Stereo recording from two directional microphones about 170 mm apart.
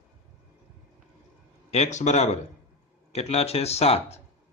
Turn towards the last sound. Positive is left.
turn(degrees=35)  # may be behind; listen again after turning